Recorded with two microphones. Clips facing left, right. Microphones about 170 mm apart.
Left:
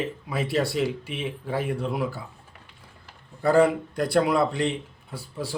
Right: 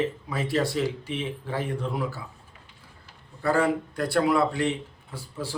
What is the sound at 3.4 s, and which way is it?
A man's voice, 15° left (ahead or behind).